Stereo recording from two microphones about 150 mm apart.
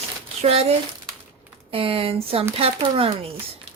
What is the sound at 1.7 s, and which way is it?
Speech, 35° right (ahead or behind).